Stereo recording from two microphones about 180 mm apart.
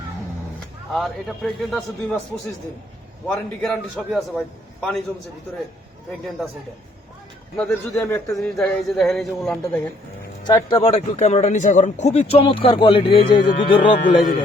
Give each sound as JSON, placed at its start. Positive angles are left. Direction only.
{"t": 0.9, "sound": "a man's voice", "side_deg": 0}
{"t": 3.2, "sound": "a man's voice", "side_deg": 10}
{"t": 6.1, "sound": "a man's voice", "side_deg": 0}
{"t": 7.5, "sound": "a man's voice", "side_deg": 10}
{"t": 8.4, "sound": "a man's voice", "side_deg": 0}
{"t": 10.4, "sound": "speech", "side_deg": 25}